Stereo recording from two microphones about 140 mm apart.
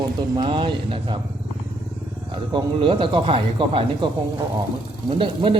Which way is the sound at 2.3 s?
35° right (ahead or behind).